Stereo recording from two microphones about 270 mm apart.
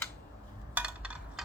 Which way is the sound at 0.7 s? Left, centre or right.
Centre.